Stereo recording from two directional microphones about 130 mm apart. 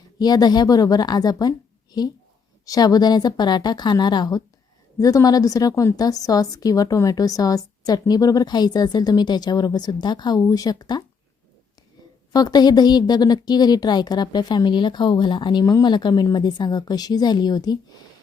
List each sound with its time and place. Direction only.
0.2 s a woman's voice: 30° left (ahead or behind)
12.3 s a woman's voice: 30° left (ahead or behind)